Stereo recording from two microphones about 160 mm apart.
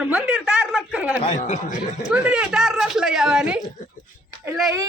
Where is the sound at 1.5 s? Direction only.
50° left (ahead or behind).